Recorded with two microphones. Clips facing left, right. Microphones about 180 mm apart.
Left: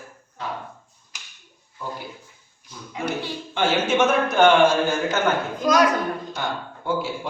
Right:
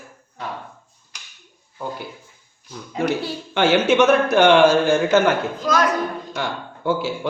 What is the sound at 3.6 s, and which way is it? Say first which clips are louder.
Speech: right 4 dB; 70° right (ahead or behind).